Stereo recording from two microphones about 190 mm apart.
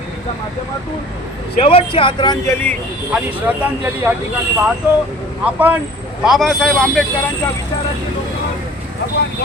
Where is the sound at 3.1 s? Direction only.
10° right (ahead or behind).